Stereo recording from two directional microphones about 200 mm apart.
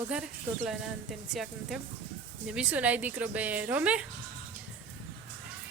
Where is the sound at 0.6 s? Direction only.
Centre (ahead or behind).